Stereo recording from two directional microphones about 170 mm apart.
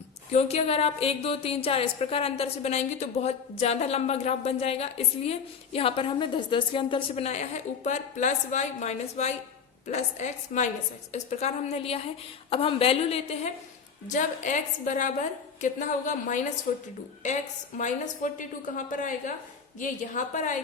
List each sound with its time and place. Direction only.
0.3 s a woman's voice: 40° left (ahead or behind)
14.1 s a woman's voice: 50° left (ahead or behind)